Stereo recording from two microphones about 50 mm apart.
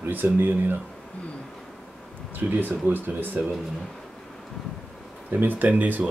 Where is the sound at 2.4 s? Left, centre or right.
Right.